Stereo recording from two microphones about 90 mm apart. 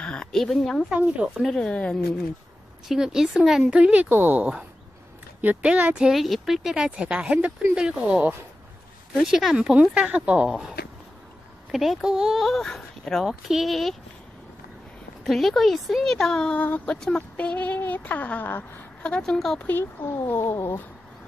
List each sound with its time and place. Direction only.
0.0 s speech: 10° left (ahead or behind)
0.8 s speech: 15° right (ahead or behind)
1.4 s speech: 10° left (ahead or behind)
2.9 s speech: 5° right (ahead or behind)
11.7 s speech: 5° right (ahead or behind)
15.2 s speech: centre (ahead or behind)
19.6 s speech: 25° left (ahead or behind)